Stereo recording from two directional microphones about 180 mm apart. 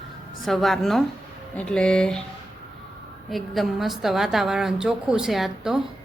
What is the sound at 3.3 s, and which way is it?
Speech, centre (ahead or behind).